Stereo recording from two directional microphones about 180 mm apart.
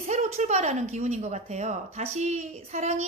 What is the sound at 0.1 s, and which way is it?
A woman's voice, 40° right (ahead or behind).